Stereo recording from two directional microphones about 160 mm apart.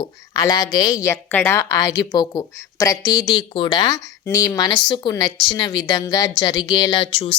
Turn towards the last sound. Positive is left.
turn(degrees=35)  # may be behind; listen again after turning